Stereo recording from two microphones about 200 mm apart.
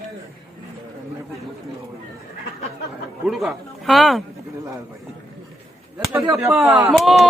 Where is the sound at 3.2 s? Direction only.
Centre (ahead or behind).